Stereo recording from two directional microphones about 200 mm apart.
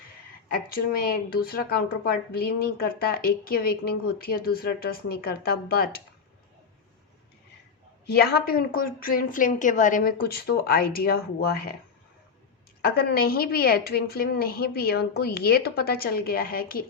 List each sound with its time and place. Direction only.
0.7 s a woman's voice: 50° left (ahead or behind)
8.0 s a woman's voice: 55° left (ahead or behind)
12.8 s a woman's voice: 50° left (ahead or behind)